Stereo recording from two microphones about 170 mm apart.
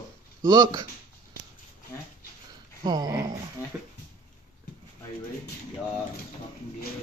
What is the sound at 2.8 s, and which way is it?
Speech, 25° right (ahead or behind).